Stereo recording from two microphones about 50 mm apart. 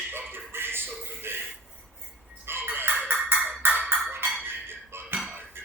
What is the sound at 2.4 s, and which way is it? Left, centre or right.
Fowl, right.